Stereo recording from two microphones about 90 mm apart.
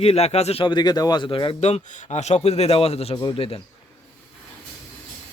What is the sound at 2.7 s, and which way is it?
Speech, 90° left.